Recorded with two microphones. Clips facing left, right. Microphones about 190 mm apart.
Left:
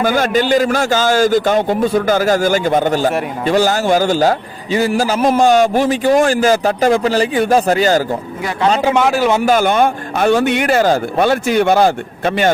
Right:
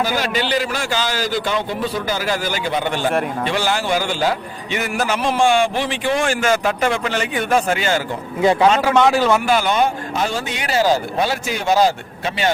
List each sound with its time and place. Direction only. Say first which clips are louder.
0.0 s a man's voice: left 6 dB; 50° left (ahead or behind)
9.0 s a man's voice: even; 5° left (ahead or behind)
9.5 s speech: left 4 dB; 50° left (ahead or behind)